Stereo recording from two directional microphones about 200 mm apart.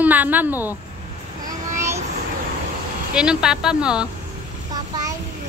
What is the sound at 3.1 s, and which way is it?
Speech, 5° right (ahead or behind).